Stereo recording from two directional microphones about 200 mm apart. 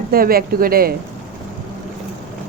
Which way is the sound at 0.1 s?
50° right (ahead or behind).